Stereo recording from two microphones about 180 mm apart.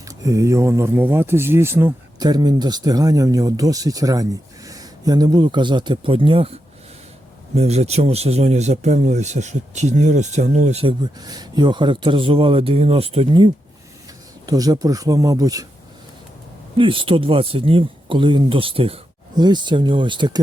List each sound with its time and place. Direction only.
0.0 s speech: 20° right (ahead or behind); by 10.9 s 35° right (ahead or behind)
11.2 s speech: 20° right (ahead or behind)
16.7 s speech: 30° right (ahead or behind)